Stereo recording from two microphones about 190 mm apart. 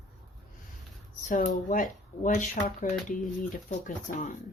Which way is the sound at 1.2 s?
45° left (ahead or behind).